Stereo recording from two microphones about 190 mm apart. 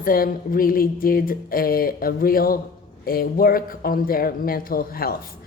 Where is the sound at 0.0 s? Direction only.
50° left (ahead or behind).